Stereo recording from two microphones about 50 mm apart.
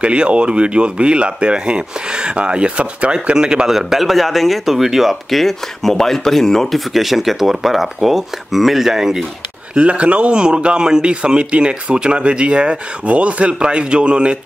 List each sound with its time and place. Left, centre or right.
0.0 s a man's voice: right
3.7 s speech: centre
6.9 s speech: centre
9.8 s a man's voice: right